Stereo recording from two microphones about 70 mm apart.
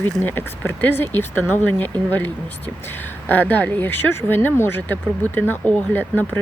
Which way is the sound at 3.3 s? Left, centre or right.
Left.